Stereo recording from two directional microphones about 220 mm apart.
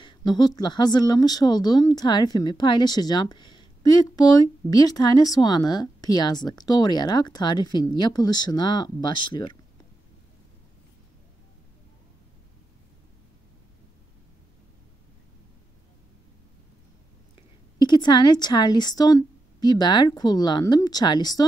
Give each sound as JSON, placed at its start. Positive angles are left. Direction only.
{"t": 0.0, "sound": "speech", "side_deg": 20}
{"t": 17.7, "sound": "a woman's voice", "side_deg": 20}